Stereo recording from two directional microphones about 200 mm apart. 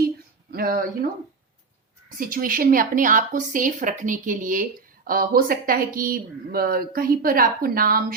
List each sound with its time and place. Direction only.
0.5 s speech: 45° right (ahead or behind)
2.1 s speech: 45° right (ahead or behind)